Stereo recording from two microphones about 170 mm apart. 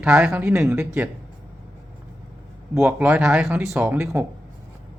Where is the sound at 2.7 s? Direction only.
15° right (ahead or behind).